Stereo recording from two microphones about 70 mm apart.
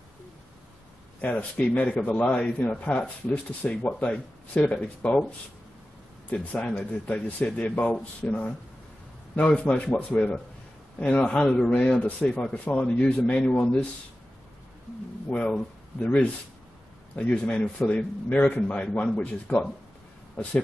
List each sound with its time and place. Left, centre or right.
1.7 s a man's voice: centre
6.3 s a man's voice: centre
15.2 s a man's voice: centre